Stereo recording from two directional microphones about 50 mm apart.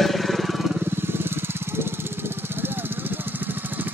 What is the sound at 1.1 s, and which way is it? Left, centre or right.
Lawn mower, right.